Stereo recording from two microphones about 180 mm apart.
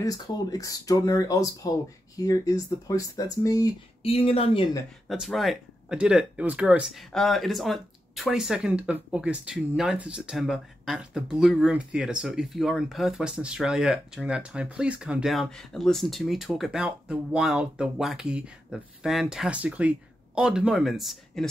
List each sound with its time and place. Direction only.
0.0 s speech: 20° left (ahead or behind)
4.0 s speech: 30° left (ahead or behind)
5.0 s speech: centre (ahead or behind)